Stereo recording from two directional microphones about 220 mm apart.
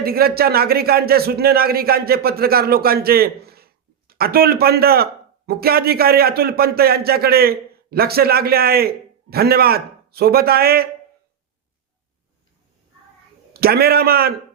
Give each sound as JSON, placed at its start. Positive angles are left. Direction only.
{"t": 0.0, "sound": "speech", "side_deg": -45}
{"t": 13.5, "sound": "speech", "side_deg": -45}